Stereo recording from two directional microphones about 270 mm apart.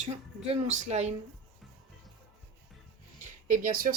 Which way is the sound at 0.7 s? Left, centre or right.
Right.